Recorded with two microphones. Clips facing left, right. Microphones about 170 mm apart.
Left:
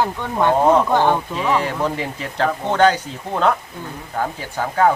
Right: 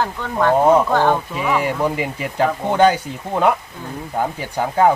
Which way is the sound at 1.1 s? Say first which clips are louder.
Even; 10° right (ahead or behind).